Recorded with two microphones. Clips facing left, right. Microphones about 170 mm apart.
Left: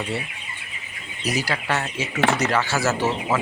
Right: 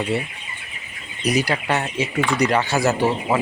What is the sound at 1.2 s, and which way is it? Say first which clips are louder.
Speech: right 5 dB; 15° right (ahead or behind).